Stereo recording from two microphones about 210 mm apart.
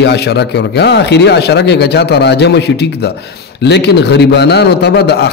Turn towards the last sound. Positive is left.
turn(degrees=50)  # may be behind; listen again after turning